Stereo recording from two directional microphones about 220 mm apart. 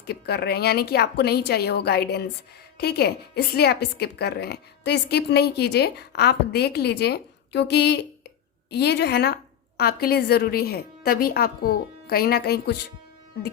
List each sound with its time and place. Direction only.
0.0 s a woman's voice: 45° left (ahead or behind)